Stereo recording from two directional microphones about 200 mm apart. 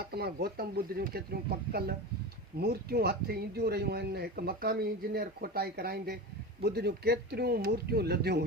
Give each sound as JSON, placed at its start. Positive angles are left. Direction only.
{"t": 0.1, "sound": "speech", "side_deg": -50}